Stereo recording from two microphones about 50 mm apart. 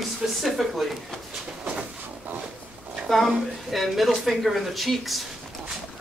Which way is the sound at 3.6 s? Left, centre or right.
Centre.